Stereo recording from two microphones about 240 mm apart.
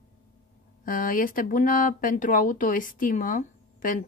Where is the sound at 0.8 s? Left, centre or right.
Left.